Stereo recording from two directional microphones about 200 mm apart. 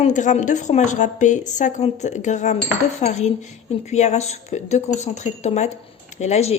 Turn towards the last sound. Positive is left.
turn(degrees=35)  # may be behind; listen again after turning